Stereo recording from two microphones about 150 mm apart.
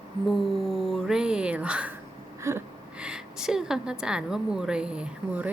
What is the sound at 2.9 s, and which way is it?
A woman's voice, 5° right (ahead or behind).